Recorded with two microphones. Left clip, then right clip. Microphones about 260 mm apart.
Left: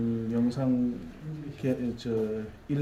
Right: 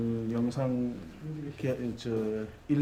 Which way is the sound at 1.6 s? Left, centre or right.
Centre.